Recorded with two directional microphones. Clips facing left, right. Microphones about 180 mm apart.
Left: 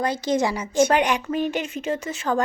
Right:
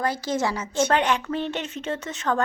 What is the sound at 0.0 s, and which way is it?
A woman's voice, 20° left (ahead or behind).